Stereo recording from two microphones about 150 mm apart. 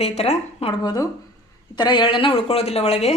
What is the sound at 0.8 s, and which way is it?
A woman's voice, 25° left (ahead or behind).